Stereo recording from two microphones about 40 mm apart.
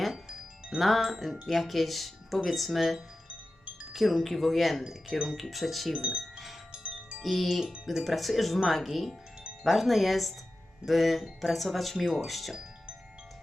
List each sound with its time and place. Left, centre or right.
0.8 s speech: centre
5.1 s speech: centre
5.4 s speech: centre
5.9 s speech: right
6.7 s music: right
7.2 s speech: centre